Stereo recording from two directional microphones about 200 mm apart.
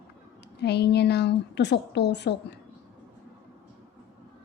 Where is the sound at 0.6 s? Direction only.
55° left (ahead or behind).